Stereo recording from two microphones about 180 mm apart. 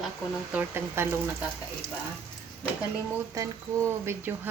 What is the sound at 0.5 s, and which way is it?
Speech, 15° right (ahead or behind).